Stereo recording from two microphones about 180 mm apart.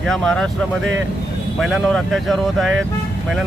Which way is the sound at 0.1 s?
5° left (ahead or behind).